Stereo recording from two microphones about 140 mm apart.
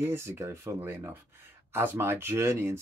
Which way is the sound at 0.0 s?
20° right (ahead or behind).